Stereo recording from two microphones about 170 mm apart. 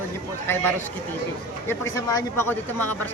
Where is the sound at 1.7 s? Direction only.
15° left (ahead or behind).